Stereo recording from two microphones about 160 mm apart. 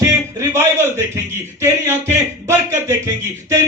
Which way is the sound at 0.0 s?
15° right (ahead or behind).